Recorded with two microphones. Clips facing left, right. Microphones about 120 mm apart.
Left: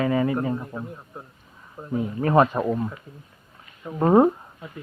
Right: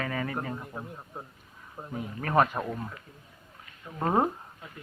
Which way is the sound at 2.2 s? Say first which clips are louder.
Left 6 dB; 30° left (ahead or behind).